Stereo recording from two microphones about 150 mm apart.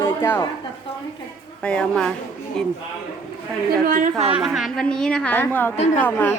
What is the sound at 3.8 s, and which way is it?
Speech, 65° right (ahead or behind).